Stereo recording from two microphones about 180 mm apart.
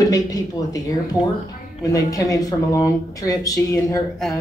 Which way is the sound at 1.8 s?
20° left (ahead or behind).